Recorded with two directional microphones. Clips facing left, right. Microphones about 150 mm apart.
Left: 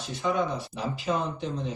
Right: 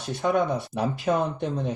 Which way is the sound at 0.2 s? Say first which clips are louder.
Right 4 dB; 55° right (ahead or behind).